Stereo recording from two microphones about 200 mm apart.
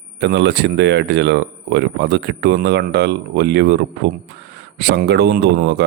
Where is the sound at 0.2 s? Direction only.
60° right (ahead or behind).